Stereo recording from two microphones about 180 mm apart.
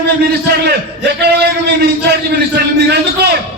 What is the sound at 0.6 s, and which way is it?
A man's voice, 65° right (ahead or behind).